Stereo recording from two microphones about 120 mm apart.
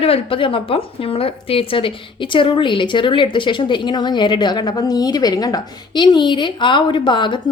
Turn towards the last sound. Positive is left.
turn(degrees=40)  # may be behind; listen again after turning